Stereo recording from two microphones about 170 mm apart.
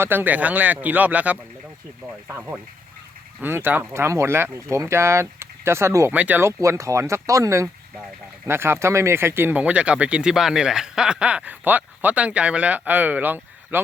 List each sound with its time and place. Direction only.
0.0 s speech: 10° right (ahead or behind)